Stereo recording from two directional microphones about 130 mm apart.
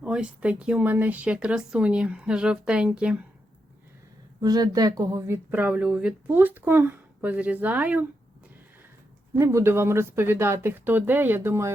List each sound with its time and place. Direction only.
0.0 s speech: 10° right (ahead or behind)
4.4 s speech: 30° right (ahead or behind); by 8.0 s 10° right (ahead or behind)
9.4 s speech: 20° right (ahead or behind)